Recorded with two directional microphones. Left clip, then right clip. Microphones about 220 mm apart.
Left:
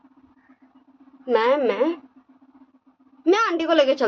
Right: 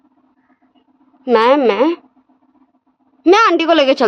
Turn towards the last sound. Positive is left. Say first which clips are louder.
# right 7 dB
turn(degrees=-50)  # may be behind; listen again after turning